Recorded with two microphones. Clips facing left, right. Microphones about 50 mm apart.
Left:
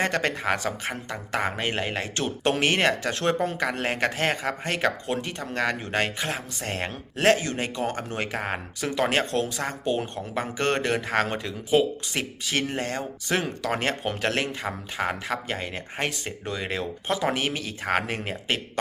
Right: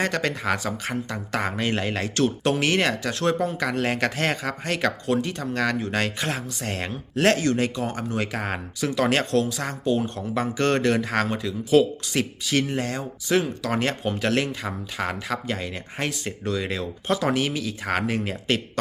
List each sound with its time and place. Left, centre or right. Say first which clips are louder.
0.0 s speech: even; left
2.4 s speech: left 4 dB; left
3.8 s speech: right 4 dB; left
6.1 s speech: right 2 dB; centre
6.6 s speech: right 1 dB; left
7.8 s speech: right 1 dB; left
8.4 s speech: right 1 dB; left
8.8 s speech: right 2 dB; left
12.5 s speech: right 1 dB; left